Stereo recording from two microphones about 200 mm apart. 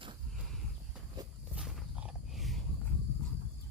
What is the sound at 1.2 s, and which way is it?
Walk, 20° right (ahead or behind).